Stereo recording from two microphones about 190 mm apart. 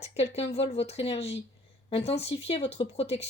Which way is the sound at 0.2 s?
30° left (ahead or behind).